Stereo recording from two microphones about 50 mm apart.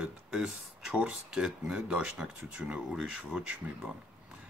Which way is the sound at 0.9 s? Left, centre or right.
Centre.